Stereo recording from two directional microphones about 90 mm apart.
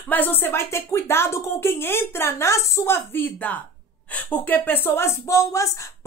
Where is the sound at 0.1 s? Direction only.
20° left (ahead or behind).